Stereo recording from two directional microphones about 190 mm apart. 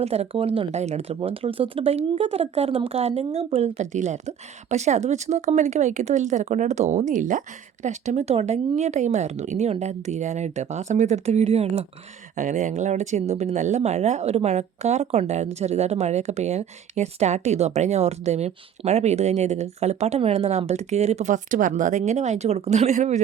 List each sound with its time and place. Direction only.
0.0 s speech: 35° right (ahead or behind)